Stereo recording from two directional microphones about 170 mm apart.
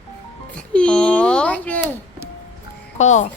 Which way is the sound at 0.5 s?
5° left (ahead or behind).